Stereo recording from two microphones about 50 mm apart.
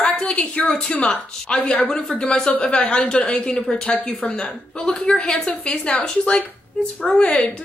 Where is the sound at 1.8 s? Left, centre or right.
Left; by 5.5 s centre.